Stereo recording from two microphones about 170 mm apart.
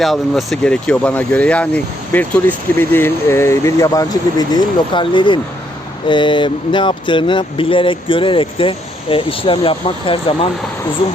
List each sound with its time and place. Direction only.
0.0 s speech: centre (ahead or behind); by 10.5 s 30° left (ahead or behind)